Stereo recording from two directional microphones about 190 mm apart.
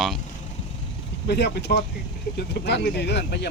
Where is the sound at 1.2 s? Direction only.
60° left (ahead or behind).